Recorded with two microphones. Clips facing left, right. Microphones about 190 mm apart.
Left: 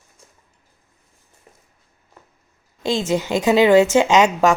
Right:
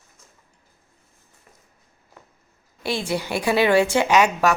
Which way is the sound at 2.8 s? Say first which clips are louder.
Left 5 dB; 20° left (ahead or behind).